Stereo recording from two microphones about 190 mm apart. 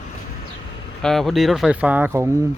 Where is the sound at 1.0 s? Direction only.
Centre (ahead or behind); by 2.4 s 15° right (ahead or behind).